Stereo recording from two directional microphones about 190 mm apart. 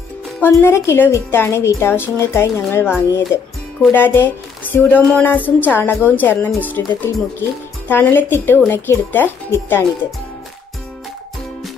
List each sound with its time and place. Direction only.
0.4 s a woman's voice: 15° left (ahead or behind)